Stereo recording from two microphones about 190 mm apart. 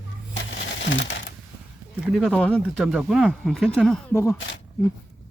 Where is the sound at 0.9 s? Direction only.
75° left (ahead or behind).